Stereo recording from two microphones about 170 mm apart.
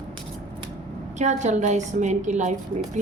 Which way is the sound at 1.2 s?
45° right (ahead or behind).